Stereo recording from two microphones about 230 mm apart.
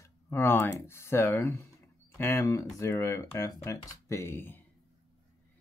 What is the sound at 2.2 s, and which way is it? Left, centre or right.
Speech, centre.